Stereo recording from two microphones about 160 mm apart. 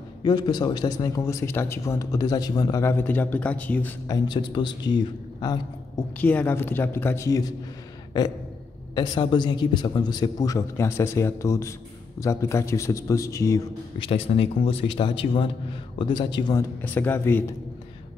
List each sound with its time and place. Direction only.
0.2 s speech: 25° left (ahead or behind); by 3.9 s 10° left (ahead or behind)
4.1 s speech: 25° left (ahead or behind)
6.1 s a man's voice: 10° left (ahead or behind)
8.9 s speech: 30° left (ahead or behind)
13.9 s a man's voice: 35° left (ahead or behind)
16.8 s a man's voice: 10° left (ahead or behind)